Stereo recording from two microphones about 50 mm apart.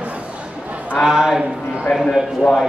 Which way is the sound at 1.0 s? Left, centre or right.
Centre.